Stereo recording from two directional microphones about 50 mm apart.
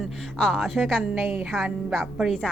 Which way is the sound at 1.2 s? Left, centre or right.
Centre.